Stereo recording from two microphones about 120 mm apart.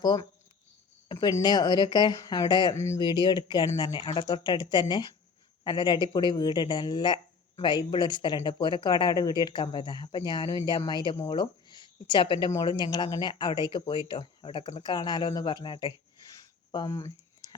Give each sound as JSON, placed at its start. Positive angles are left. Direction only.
{"t": 0.0, "sound": "speech", "side_deg": 35}
{"t": 2.7, "sound": "speech", "side_deg": 25}
{"t": 3.0, "sound": "speech", "side_deg": 40}
{"t": 15.6, "sound": "a sound", "side_deg": 40}